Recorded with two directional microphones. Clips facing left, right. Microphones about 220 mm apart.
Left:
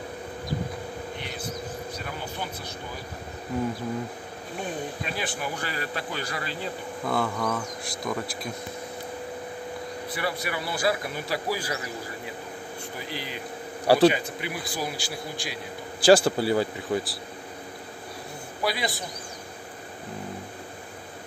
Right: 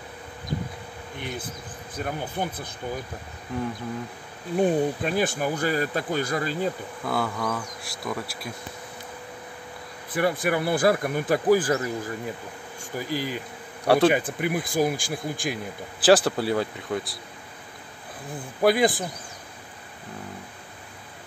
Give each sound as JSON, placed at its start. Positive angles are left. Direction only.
{"t": 2.0, "sound": "speech", "side_deg": -50}
{"t": 3.5, "sound": "speech", "side_deg": 5}
{"t": 4.6, "sound": "speech", "side_deg": -50}
{"t": 7.1, "sound": "speech", "side_deg": 0}
{"t": 10.1, "sound": "speech", "side_deg": -50}
{"t": 13.1, "sound": "speech", "side_deg": -45}
{"t": 13.8, "sound": "speech", "side_deg": 0}
{"t": 14.1, "sound": "speech", "side_deg": -50}
{"t": 16.0, "sound": "speech", "side_deg": 0}
{"t": 18.6, "sound": "speech", "side_deg": -50}